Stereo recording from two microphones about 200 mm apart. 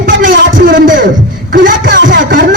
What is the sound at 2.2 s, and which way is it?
Speech, 50° right (ahead or behind).